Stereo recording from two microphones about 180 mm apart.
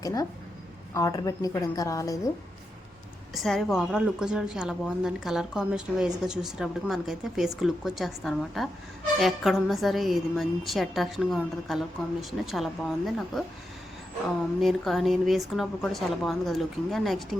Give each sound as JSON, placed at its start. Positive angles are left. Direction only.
{"t": 0.0, "sound": "a woman's voice", "side_deg": 20}
{"t": 3.3, "sound": "a woman's voice", "side_deg": 0}
{"t": 14.6, "sound": "a woman's voice", "side_deg": 0}